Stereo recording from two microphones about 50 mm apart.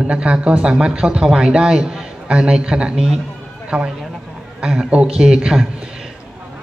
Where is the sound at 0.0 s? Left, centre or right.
Right.